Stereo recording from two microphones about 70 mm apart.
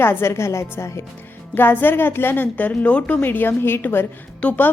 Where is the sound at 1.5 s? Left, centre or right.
Left.